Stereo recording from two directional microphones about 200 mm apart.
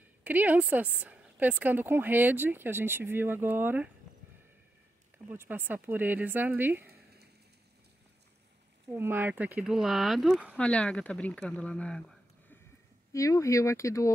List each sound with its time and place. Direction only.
0.2 s speech: 10° right (ahead or behind)
5.3 s speech: 10° right (ahead or behind)
8.8 s speech: 10° right (ahead or behind); by 12.5 s 5° left (ahead or behind)
13.1 s speech: 15° left (ahead or behind)